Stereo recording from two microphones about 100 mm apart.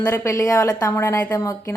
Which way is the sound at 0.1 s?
30° left (ahead or behind).